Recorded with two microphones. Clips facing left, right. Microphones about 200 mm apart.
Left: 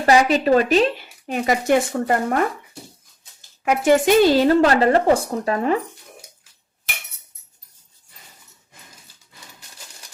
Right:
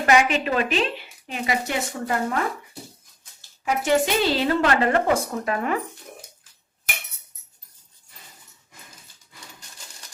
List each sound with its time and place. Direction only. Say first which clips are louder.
0.0 s speech: left 4 dB; 35° left (ahead or behind); by 2.4 s 55° left (ahead or behind)
3.6 s speech: left 5 dB; 55° left (ahead or behind); by 5.8 s 30° left (ahead or behind)